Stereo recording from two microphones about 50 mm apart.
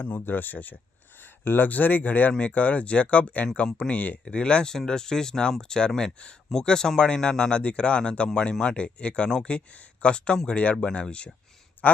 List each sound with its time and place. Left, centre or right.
0.3 s speech: left; by 11.3 s centre